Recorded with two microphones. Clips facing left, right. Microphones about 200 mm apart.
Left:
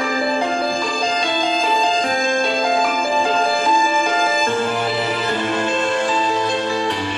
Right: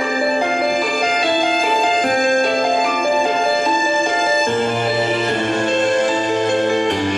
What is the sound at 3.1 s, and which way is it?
Music, 20° right (ahead or behind).